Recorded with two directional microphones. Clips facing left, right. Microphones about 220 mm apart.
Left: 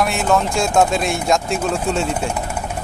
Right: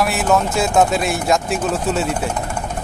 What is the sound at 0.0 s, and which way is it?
Speech, 5° right (ahead or behind).